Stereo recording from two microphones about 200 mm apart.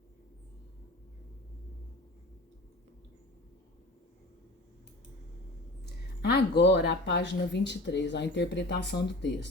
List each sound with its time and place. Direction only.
5.8 s speech: 55° left (ahead or behind)